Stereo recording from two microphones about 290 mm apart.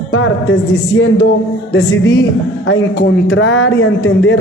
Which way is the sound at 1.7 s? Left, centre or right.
Left.